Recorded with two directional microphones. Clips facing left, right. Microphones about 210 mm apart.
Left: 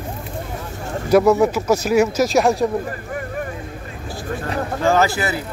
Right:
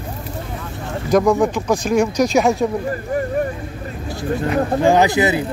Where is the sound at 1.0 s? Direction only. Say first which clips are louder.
Left 1 dB; 5° left (ahead or behind).